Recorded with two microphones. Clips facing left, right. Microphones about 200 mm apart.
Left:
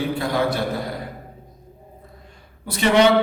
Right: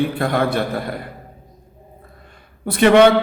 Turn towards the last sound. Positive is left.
turn(degrees=-55)  # may be behind; listen again after turning